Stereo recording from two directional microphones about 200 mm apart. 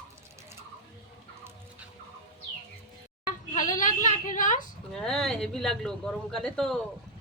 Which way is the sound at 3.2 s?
40° left (ahead or behind).